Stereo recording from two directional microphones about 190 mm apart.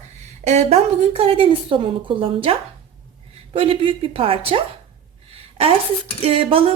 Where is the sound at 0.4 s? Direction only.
35° right (ahead or behind).